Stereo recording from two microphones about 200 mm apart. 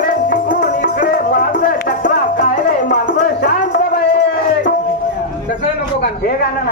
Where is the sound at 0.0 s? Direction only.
45° left (ahead or behind).